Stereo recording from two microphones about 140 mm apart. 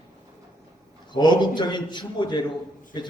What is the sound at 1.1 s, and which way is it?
A man's voice, 30° left (ahead or behind).